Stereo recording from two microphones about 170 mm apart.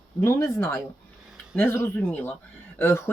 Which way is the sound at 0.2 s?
15° left (ahead or behind).